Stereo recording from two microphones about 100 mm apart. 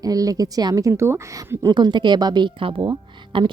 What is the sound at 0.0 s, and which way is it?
Speech, 40° right (ahead or behind).